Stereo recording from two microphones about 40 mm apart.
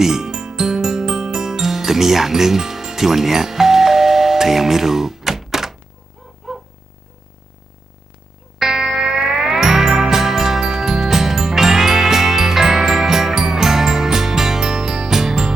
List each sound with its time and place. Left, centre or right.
0.0 s music: centre
6.4 s a sound: centre
8.5 s music: centre